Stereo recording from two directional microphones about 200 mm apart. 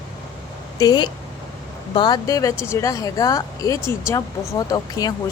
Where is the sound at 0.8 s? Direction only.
20° left (ahead or behind).